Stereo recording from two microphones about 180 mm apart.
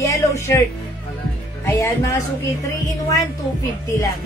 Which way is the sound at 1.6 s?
15° left (ahead or behind).